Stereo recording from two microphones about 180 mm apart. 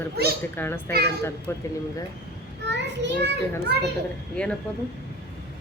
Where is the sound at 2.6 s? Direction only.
75° right (ahead or behind).